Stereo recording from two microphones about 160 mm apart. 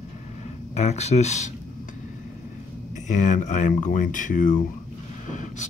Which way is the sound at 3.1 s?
50° left (ahead or behind).